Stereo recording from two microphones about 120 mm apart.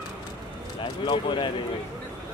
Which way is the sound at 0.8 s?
40° left (ahead or behind).